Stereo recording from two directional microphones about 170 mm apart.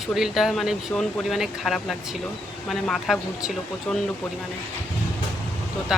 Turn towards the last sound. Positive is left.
turn(degrees=-5)  # may be behind; listen again after turning